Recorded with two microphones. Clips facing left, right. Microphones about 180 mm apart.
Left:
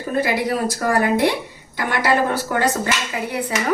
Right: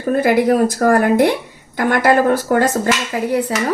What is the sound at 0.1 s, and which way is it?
A woman's voice, 50° right (ahead or behind).